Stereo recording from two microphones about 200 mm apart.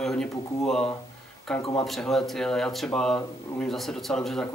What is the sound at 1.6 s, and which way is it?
Speech, 25° left (ahead or behind).